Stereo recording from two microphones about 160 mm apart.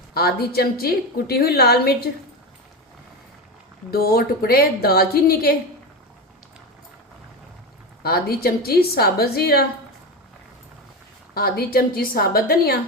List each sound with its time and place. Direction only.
0.1 s a woman's voice: 75° left (ahead or behind)
3.9 s a woman's voice: 70° left (ahead or behind)
8.0 s a woman's voice: 75° left (ahead or behind)
11.3 s a woman's voice: 75° left (ahead or behind)